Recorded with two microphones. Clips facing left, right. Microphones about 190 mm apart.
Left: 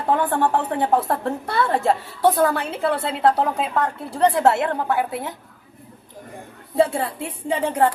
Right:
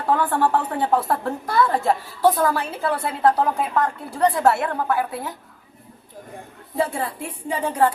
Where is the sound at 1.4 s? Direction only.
25° left (ahead or behind).